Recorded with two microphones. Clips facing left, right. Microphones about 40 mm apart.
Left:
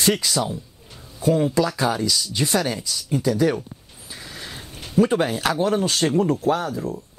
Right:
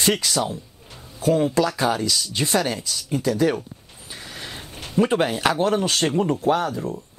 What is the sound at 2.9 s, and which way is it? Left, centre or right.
Speech, right.